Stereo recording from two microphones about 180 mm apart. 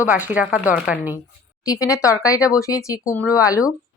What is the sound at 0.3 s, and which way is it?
Speech, 10° right (ahead or behind).